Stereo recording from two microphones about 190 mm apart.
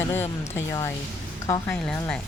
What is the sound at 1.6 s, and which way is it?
Speech, 5° left (ahead or behind).